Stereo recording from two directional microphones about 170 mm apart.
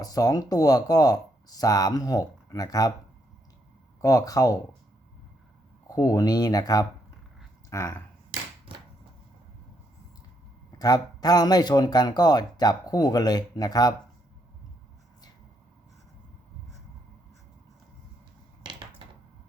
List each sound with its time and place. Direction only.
0.0 s speech: 20° left (ahead or behind)
4.0 s speech: 20° left (ahead or behind)
5.9 s speech: 20° left (ahead or behind)
10.8 s speech: 25° left (ahead or behind)